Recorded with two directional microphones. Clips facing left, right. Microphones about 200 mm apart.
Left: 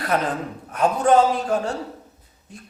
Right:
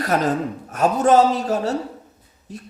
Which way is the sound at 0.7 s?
40° right (ahead or behind).